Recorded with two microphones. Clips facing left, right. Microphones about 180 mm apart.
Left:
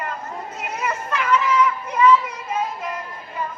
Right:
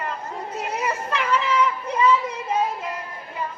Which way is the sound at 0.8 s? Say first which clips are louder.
Left 2 dB; 30° right (ahead or behind).